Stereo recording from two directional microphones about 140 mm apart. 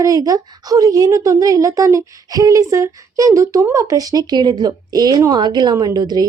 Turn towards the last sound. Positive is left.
turn(degrees=-30)  # may be behind; listen again after turning